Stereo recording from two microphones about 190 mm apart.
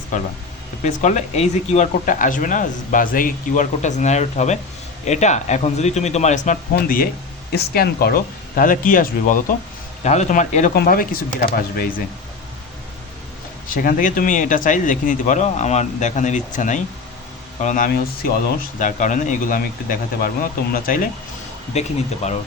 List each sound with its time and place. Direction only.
0.1 s speech: 40° left (ahead or behind)
10.8 s speech: 50° left (ahead or behind)
13.7 s speech: 45° left (ahead or behind)
21.7 s speech: 35° left (ahead or behind)